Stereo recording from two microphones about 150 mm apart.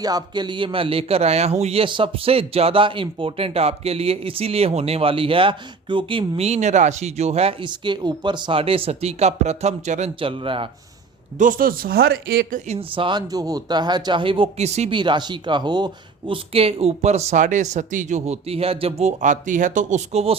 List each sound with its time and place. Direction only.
0.0 s a man's voice: 25° right (ahead or behind); by 10.1 s 50° right (ahead or behind)
10.2 s a man's voice: 35° right (ahead or behind)
11.3 s speech: 65° right (ahead or behind); by 14.9 s 45° right (ahead or behind)
14.9 s speech: 30° right (ahead or behind); by 20.3 s 50° right (ahead or behind)